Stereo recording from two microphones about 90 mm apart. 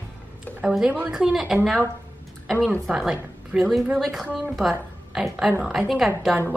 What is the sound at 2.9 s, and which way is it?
A woman's voice, 5° right (ahead or behind).